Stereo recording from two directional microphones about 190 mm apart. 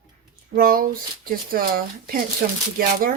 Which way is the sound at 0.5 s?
50° right (ahead or behind).